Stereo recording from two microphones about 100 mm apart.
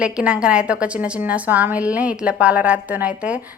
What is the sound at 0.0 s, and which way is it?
A woman's voice, 10° right (ahead or behind).